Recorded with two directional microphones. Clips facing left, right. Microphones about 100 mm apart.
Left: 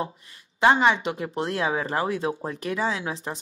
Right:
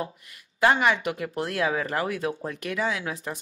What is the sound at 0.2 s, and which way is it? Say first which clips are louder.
A woman's voice: left 2 dB; 25° left (ahead or behind).